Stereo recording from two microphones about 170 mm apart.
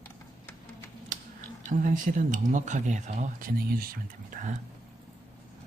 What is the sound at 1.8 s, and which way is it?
Speech, 50° right (ahead or behind).